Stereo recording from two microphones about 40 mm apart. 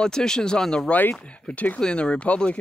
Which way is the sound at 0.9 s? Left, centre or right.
Left.